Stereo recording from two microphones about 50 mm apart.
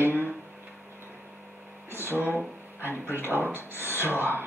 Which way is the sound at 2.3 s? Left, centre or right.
Right.